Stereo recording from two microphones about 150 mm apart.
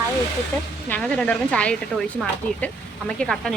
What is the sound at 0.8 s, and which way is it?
Speech, 10° left (ahead or behind).